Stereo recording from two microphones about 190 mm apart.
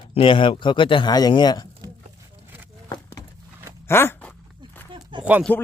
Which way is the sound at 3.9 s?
10° left (ahead or behind).